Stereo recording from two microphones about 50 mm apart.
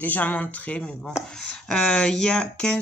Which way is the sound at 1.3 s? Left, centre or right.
Centre.